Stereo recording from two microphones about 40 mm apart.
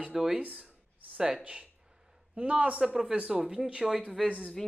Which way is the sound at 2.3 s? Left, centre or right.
Right.